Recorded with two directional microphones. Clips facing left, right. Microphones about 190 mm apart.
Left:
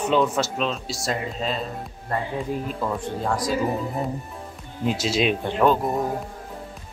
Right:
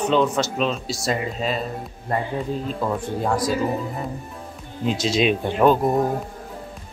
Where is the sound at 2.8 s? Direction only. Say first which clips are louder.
Right 2 dB; 5° right (ahead or behind).